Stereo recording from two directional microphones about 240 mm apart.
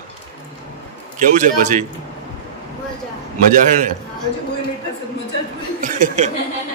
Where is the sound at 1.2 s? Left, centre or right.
Right.